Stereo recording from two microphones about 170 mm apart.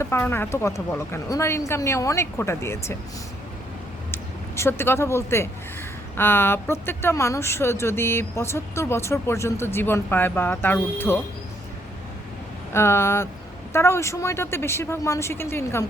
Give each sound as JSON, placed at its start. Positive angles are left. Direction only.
{"t": 0.0, "sound": "speech", "side_deg": 15}
{"t": 4.1, "sound": "speech", "side_deg": 15}
{"t": 12.7, "sound": "speech", "side_deg": 15}